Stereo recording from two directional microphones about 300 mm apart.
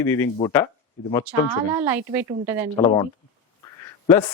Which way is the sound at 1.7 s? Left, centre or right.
Centre.